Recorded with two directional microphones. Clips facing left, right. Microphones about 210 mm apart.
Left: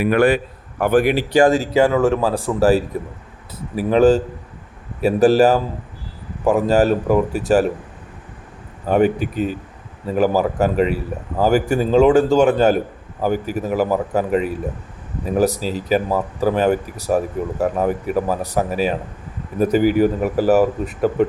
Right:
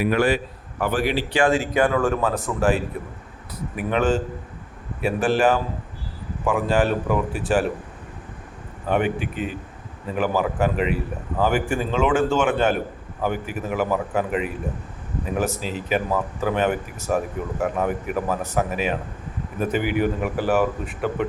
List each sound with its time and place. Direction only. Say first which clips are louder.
0.0 s a man's voice: left 5 dB; 55° left (ahead or behind); by 1.7 s 40° left (ahead or behind)
1.7 s speech: left 5 dB; 25° left (ahead or behind); by 7.6 s 40° left (ahead or behind)
8.9 s speech: left 6 dB; 40° left (ahead or behind)